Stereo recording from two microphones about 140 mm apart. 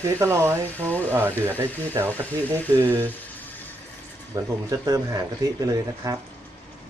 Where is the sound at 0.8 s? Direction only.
10° left (ahead or behind).